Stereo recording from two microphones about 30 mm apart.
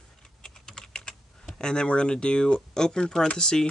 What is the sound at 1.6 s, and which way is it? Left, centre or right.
Speech, left.